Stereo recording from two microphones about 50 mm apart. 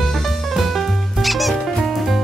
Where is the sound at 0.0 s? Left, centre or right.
Centre.